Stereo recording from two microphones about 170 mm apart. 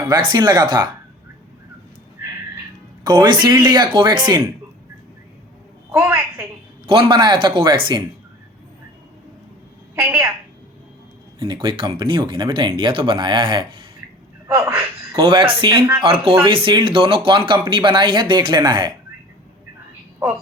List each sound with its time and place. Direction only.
0.3 s speech: 25° right (ahead or behind)
3.0 s speech: 25° right (ahead or behind)
5.9 s a man's voice: 15° right (ahead or behind)
6.8 s speech: 30° right (ahead or behind)
9.9 s a woman's voice: 15° right (ahead or behind)
11.3 s speech: 25° right (ahead or behind)
14.4 s a man's voice: 15° right (ahead or behind)
15.2 s speech: 30° right (ahead or behind)